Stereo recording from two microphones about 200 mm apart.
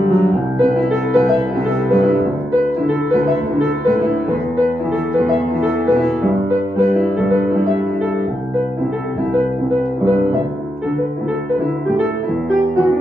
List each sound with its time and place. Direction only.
0.6 s music: centre (ahead or behind)
5.6 s music: centre (ahead or behind)